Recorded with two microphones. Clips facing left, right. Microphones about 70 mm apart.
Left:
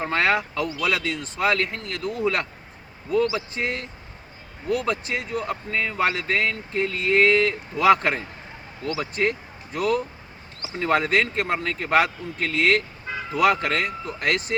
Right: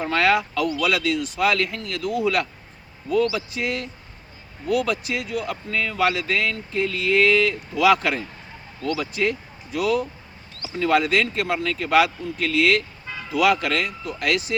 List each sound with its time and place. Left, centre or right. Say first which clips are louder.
0.0 s speech: right 2 dB; left
4.9 s speech: even; left
10.6 s speech: right 2 dB; left